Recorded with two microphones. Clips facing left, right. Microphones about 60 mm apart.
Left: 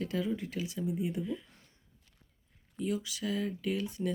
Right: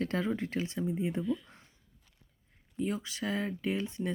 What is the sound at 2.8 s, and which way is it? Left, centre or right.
Speech, right.